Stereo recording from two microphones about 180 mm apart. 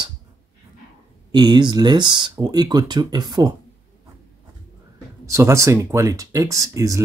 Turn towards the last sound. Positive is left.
turn(degrees=-15)  # may be behind; listen again after turning